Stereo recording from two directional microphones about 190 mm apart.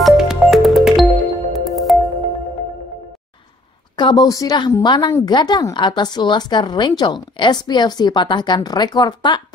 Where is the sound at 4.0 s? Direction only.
20° left (ahead or behind).